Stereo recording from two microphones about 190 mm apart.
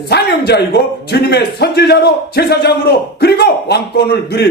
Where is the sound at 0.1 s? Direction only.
60° left (ahead or behind).